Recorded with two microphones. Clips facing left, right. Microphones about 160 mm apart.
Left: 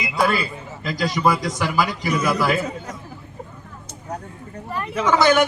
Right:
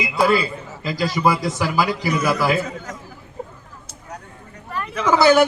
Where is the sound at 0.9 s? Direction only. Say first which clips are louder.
Right 1 dB; 5° right (ahead or behind).